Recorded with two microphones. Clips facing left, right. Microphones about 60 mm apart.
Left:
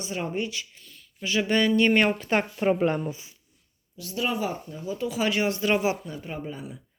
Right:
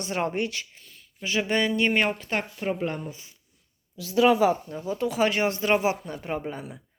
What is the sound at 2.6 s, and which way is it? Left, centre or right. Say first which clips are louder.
Speech: left 5 dB; left.